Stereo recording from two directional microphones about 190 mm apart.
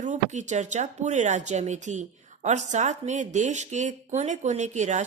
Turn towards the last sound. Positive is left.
turn(degrees=-40)  # may be behind; listen again after turning